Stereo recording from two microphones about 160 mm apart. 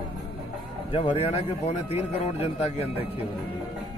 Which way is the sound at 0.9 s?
40° left (ahead or behind).